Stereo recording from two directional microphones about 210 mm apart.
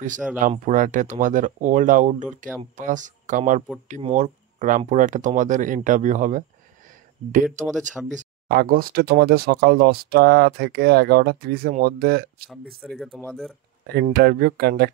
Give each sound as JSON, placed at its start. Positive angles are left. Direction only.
{"t": 0.4, "sound": "speech", "side_deg": -35}
{"t": 7.7, "sound": "speech", "side_deg": -5}
{"t": 8.1, "sound": "speech", "side_deg": -40}
{"t": 12.8, "sound": "speech", "side_deg": 0}
{"t": 13.9, "sound": "speech", "side_deg": -50}